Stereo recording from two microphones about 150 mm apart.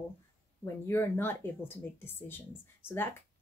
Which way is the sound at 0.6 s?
15° left (ahead or behind).